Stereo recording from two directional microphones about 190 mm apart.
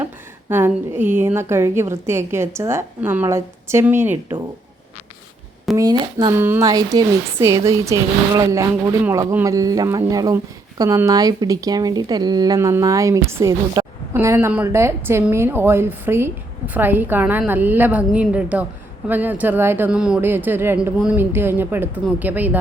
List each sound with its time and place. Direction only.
0.0 s speech: 10° right (ahead or behind)
5.7 s speech: 20° right (ahead or behind)